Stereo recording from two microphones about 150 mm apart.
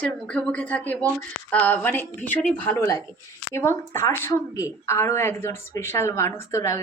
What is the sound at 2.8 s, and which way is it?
A woman's voice, 25° left (ahead or behind).